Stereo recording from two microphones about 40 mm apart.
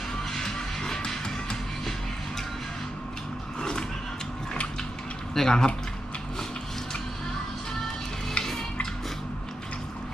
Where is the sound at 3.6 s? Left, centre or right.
Centre.